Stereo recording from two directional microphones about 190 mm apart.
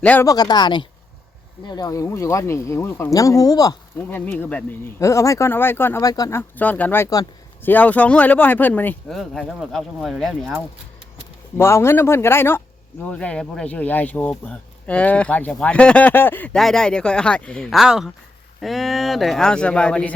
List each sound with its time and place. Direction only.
0.0 s speech: 10° left (ahead or behind)
6.6 s speech: 10° left (ahead or behind)
11.5 s speech: 15° left (ahead or behind)